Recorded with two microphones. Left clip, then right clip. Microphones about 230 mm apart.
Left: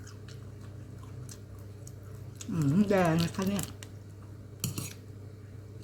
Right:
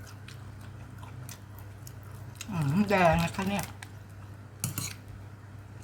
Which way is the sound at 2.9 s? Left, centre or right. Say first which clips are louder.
Right 4 dB; right.